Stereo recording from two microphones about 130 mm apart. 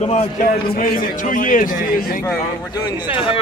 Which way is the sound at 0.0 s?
60° left (ahead or behind).